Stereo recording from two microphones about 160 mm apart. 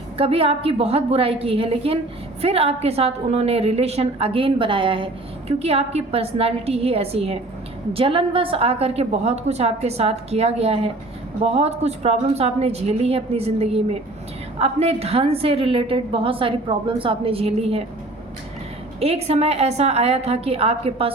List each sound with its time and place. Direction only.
0.2 s a woman's voice: 35° right (ahead or behind)
18.9 s a woman's voice: 40° right (ahead or behind)